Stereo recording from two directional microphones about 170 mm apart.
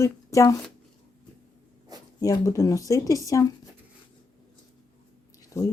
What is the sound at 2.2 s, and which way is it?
Speech, 20° left (ahead or behind).